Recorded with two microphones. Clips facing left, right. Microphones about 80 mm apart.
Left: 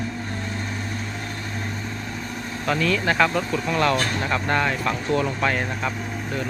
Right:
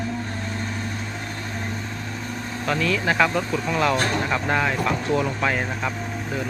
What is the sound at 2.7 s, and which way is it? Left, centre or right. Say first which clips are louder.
Speech: left 1 dB; centre.